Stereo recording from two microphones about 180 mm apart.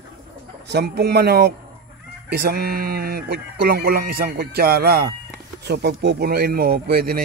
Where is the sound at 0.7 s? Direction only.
65° right (ahead or behind).